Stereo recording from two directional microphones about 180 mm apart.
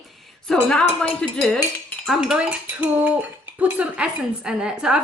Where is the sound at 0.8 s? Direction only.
30° left (ahead or behind).